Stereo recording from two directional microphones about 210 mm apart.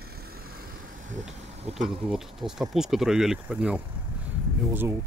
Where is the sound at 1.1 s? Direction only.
35° right (ahead or behind).